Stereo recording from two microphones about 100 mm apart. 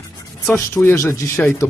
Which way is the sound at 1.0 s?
30° left (ahead or behind).